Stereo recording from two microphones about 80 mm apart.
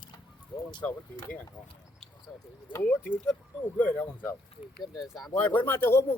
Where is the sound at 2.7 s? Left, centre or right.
Left.